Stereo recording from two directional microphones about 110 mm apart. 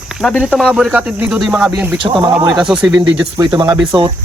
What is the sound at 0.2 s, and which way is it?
Speech, 15° left (ahead or behind).